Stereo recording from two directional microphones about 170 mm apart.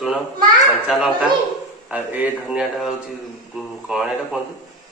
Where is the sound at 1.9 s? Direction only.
10° right (ahead or behind).